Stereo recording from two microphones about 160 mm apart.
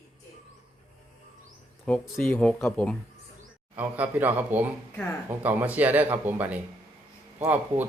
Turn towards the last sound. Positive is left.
turn(degrees=-10)  # may be behind; listen again after turning